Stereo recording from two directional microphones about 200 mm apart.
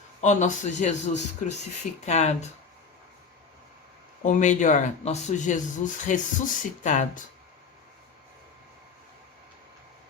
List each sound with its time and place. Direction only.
0.2 s speech: 35° left (ahead or behind)
4.2 s speech: 40° left (ahead or behind)